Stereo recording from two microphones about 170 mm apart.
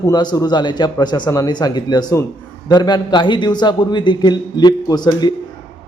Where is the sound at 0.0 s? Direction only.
25° left (ahead or behind).